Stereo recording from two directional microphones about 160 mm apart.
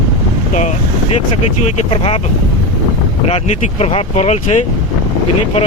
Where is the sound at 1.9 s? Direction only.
35° left (ahead or behind).